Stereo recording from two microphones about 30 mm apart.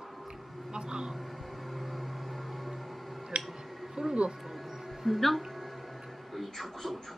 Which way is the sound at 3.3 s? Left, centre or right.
Right.